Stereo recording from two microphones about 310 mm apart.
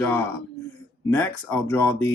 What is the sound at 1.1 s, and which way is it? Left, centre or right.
Speech, centre.